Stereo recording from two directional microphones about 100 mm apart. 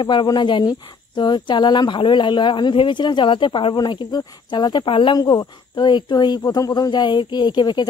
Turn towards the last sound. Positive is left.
turn(degrees=50)  # may be behind; listen again after turning